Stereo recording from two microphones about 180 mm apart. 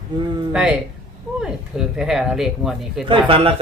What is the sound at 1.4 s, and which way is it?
Speech, 5° right (ahead or behind).